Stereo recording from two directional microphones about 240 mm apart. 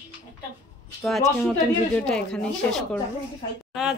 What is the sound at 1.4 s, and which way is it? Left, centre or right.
Speech, centre.